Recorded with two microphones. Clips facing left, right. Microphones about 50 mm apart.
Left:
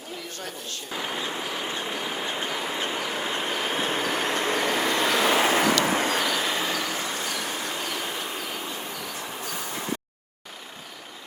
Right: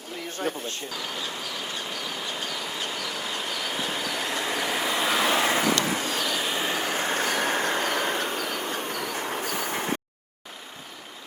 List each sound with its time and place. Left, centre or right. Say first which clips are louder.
0.9 s train: left 3 dB; left
4.8 s vehicle: even; centre
5.5 s vehicle: left 2 dB; left
6.2 s train: left 2 dB; centre
6.7 s train: right 3 dB; right